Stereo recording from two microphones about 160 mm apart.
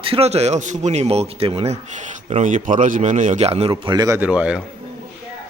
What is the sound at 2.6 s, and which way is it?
A man's voice, 55° right (ahead or behind).